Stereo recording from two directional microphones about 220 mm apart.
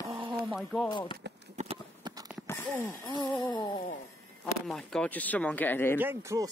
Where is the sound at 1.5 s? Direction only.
25° right (ahead or behind).